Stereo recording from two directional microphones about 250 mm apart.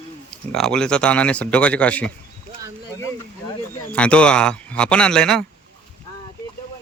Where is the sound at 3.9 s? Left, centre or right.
Centre.